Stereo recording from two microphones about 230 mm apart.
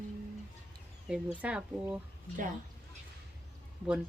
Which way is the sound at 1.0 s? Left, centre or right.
Centre.